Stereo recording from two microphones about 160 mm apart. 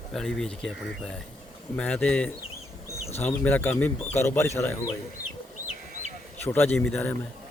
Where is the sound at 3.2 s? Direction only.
15° left (ahead or behind).